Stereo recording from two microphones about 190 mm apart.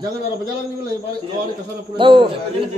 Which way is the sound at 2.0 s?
25° right (ahead or behind).